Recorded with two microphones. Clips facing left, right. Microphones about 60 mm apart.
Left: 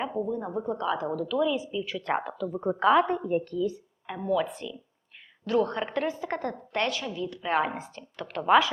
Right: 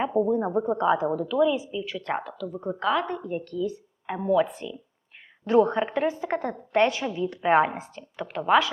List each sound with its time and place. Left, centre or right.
0.0 s a woman's voice: right; by 2.2 s centre
2.2 s a woman's voice: centre
4.0 s a woman's voice: right
7.7 s speech: centre